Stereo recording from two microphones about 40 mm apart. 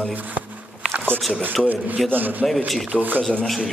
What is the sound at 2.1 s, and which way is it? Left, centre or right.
Speech, right.